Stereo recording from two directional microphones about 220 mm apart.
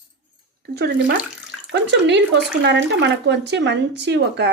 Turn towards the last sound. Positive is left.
turn(degrees=-50)  # may be behind; listen again after turning